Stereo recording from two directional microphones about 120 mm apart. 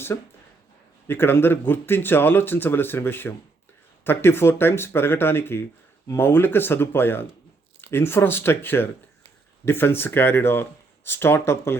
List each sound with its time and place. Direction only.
0.1 s speech: 25° left (ahead or behind)